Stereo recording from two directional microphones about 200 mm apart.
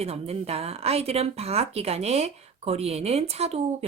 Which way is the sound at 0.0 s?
30° right (ahead or behind).